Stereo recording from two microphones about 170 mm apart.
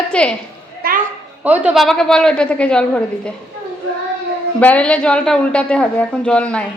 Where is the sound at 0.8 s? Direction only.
60° right (ahead or behind).